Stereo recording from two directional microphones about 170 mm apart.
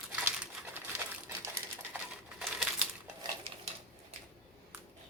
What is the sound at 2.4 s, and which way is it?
Crumpling, 5° right (ahead or behind).